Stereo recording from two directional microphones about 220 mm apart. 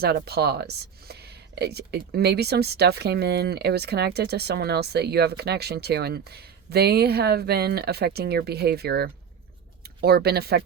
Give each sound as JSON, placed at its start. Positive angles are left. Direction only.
{"t": 0.0, "sound": "speech", "side_deg": -45}